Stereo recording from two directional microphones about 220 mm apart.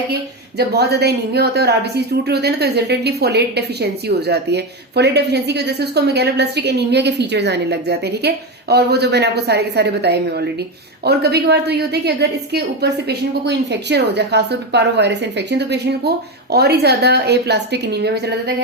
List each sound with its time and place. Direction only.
0.1 s a woman's voice: 45° right (ahead or behind)